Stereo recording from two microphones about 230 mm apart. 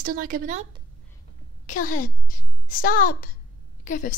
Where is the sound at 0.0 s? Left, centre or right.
Right.